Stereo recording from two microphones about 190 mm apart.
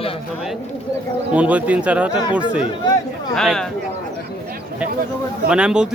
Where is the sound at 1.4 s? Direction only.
5° right (ahead or behind).